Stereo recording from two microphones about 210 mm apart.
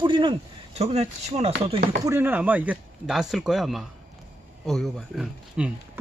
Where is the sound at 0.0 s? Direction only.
25° right (ahead or behind).